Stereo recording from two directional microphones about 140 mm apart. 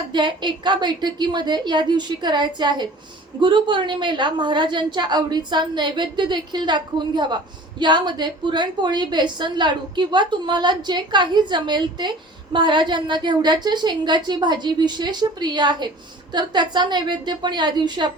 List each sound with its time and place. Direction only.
0.1 s a woman's voice: 35° right (ahead or behind)